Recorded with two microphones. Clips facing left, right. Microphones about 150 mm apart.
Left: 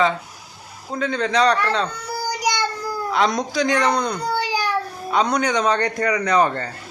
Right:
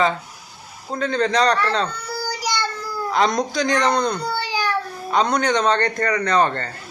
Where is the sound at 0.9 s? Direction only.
5° left (ahead or behind).